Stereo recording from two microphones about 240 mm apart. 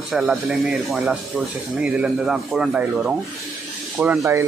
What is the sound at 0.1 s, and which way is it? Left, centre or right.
Speech, centre.